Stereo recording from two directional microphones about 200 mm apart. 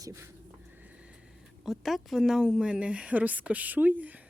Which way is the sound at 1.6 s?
Centre (ahead or behind).